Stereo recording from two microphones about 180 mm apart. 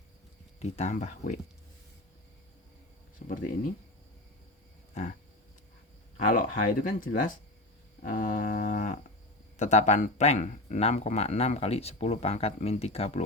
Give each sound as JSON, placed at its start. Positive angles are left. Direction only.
{"t": 0.6, "sound": "speech", "side_deg": 40}
{"t": 3.2, "sound": "speech", "side_deg": 50}
{"t": 6.2, "sound": "speech", "side_deg": 50}